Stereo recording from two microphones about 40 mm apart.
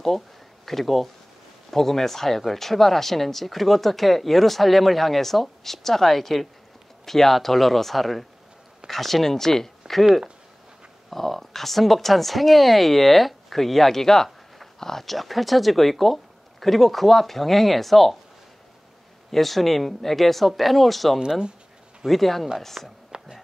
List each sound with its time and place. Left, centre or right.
0.7 s speech: centre
11.1 s speech: centre
19.3 s speech: centre
21.2 s speech: right
22.0 s speech: centre
23.1 s music: right